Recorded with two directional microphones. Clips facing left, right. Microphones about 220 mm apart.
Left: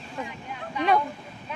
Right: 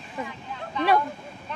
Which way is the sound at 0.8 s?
10° left (ahead or behind).